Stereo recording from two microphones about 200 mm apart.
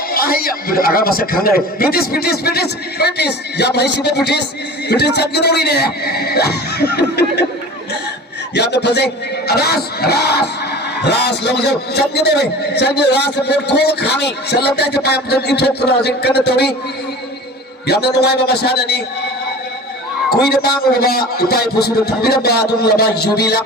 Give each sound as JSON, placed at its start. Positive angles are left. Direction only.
{"t": 0.1, "sound": "speech", "side_deg": 50}
{"t": 8.5, "sound": "a man's voice", "side_deg": 60}
{"t": 17.8, "sound": "a man's voice", "side_deg": 55}
{"t": 20.3, "sound": "speech", "side_deg": 50}